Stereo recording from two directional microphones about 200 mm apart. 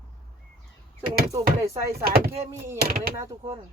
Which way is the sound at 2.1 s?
50° right (ahead or behind).